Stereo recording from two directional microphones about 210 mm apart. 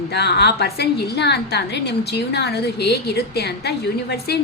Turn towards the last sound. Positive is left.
turn(degrees=50)  # may be behind; listen again after turning